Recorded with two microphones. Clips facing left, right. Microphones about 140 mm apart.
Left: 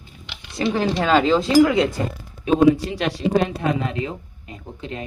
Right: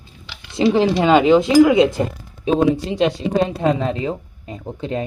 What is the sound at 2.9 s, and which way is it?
Speech, 25° right (ahead or behind).